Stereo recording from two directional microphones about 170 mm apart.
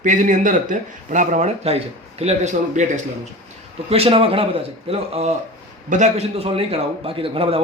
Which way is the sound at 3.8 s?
35° right (ahead or behind).